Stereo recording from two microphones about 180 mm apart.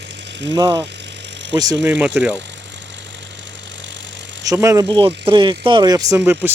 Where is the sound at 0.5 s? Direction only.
20° right (ahead or behind).